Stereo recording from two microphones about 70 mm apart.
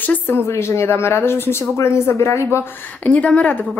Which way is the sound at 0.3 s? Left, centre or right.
Left.